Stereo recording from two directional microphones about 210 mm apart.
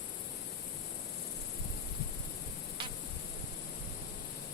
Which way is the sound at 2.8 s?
25° right (ahead or behind).